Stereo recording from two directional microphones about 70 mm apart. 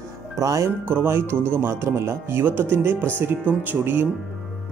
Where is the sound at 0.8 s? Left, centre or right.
Right.